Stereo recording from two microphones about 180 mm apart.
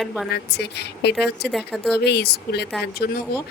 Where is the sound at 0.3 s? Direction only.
65° left (ahead or behind).